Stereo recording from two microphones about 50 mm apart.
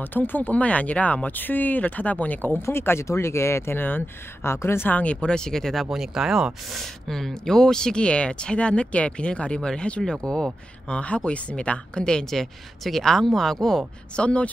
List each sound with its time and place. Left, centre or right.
0.0 s speech: left
2.6 s speech: left
3.1 s speech: left
3.7 s speech: left
4.4 s speech: left
4.8 s a woman's voice: left; by 5.9 s centre
5.9 s speech: centre
6.7 s a woman's voice: centre
11.0 s a woman's voice: left
14.1 s speech: left